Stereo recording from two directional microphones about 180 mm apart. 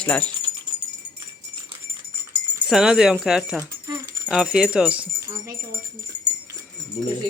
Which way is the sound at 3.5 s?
15° right (ahead or behind).